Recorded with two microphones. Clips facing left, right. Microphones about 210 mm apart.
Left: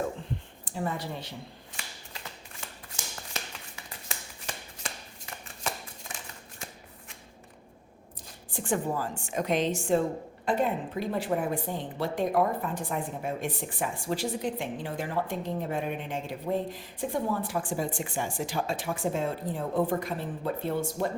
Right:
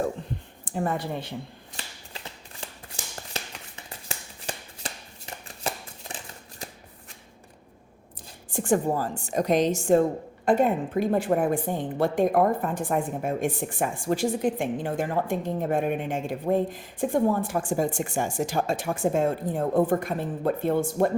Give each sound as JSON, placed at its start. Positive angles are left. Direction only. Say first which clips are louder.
{"t": 0.7, "sound": "speech", "louder": "right 5 dB", "side_deg": -55}
{"t": 2.1, "sound": "shuffling cards", "louder": "right 3 dB", "side_deg": -30}
{"t": 4.4, "sound": "shuffling cards", "louder": "right 4 dB", "side_deg": -30}
{"t": 8.5, "sound": "a woman's voice", "louder": "right 6 dB", "side_deg": -45}